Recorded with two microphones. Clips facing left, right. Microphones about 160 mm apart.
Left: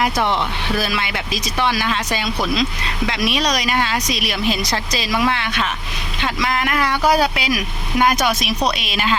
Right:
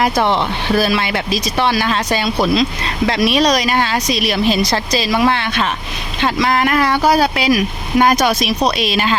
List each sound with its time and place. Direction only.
0.0 s speech: 35° right (ahead or behind)